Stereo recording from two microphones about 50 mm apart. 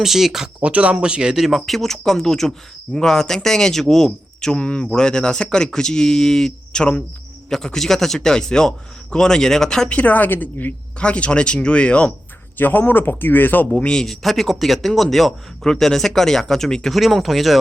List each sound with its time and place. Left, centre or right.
0.0 s speech: centre
0.6 s speech: right
1.4 s a man's voice: centre
4.5 s a man's voice: left
9.9 s speech: left
11.0 s speech: left
12.5 s speech: left
13.7 s speech: left
14.0 s a man's voice: centre
16.9 s speech: centre